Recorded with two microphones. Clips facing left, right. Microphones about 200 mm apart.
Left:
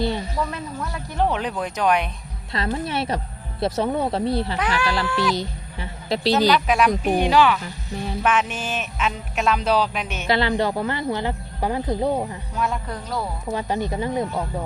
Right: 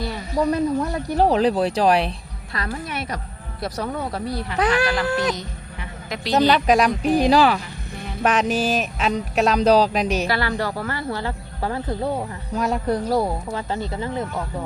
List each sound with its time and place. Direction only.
0.3 s speech: 35° right (ahead or behind)
2.5 s speech: 25° left (ahead or behind)
5.3 s a sound: 30° left (ahead or behind)
6.5 s speech: 40° right (ahead or behind)
10.2 s speech: 20° left (ahead or behind)
12.5 s speech: 40° right (ahead or behind)
13.5 s speech: 15° left (ahead or behind)